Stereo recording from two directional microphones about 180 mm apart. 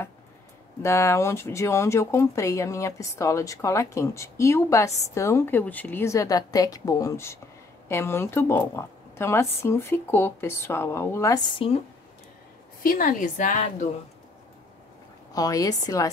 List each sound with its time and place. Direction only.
0.8 s speech: 15° left (ahead or behind)
12.8 s a woman's voice: 50° left (ahead or behind)
15.3 s a woman's voice: 20° left (ahead or behind)